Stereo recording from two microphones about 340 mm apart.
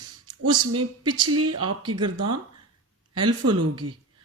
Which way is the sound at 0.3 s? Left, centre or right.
Right.